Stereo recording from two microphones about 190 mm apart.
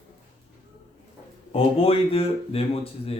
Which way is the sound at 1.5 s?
30° left (ahead or behind).